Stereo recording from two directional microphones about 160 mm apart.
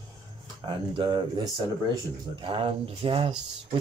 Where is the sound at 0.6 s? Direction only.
30° right (ahead or behind).